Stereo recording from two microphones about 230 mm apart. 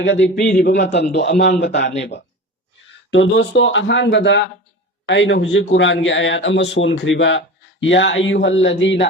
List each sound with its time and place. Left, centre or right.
0.0 s a man's voice: left